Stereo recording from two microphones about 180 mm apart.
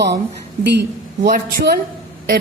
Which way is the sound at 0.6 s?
70° right (ahead or behind).